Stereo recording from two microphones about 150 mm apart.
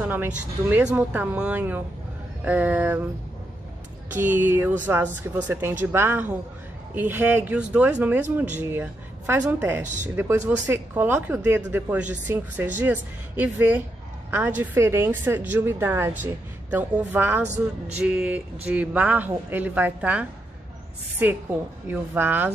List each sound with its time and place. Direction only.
0.0 s speech: 10° right (ahead or behind)
4.2 s a woman's voice: 15° right (ahead or behind)
17.5 s speech: 50° right (ahead or behind)
18.0 s speech: 5° right (ahead or behind)